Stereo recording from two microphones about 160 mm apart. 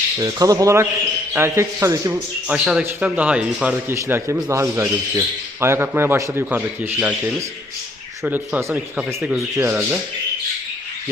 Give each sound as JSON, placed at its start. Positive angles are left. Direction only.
{"t": 0.2, "sound": "speech", "side_deg": -20}
{"t": 2.5, "sound": "speech", "side_deg": -5}